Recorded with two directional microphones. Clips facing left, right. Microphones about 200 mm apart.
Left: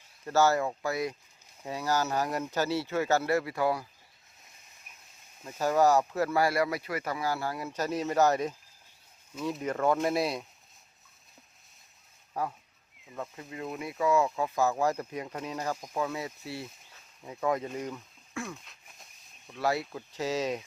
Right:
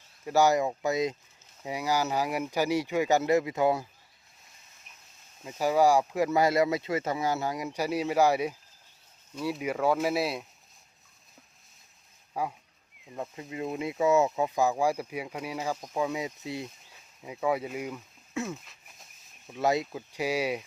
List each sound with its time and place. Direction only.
0.3 s speech: 15° right (ahead or behind)
5.4 s speech: 10° right (ahead or behind)
12.3 s speech: 10° right (ahead or behind)
18.6 s a sound: centre (ahead or behind)
19.5 s speech: 20° right (ahead or behind)